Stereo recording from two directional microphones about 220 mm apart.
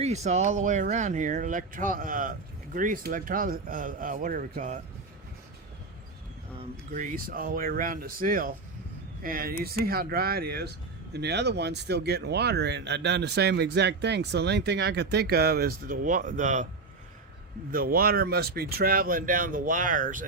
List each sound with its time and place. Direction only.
0.0 s speech: 30° right (ahead or behind)
6.6 s speech: 35° right (ahead or behind)
17.7 s speech: 40° right (ahead or behind)